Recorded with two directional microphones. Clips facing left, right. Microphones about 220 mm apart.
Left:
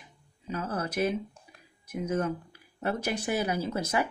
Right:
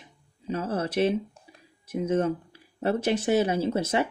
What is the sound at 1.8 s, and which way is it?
Speech, 30° right (ahead or behind).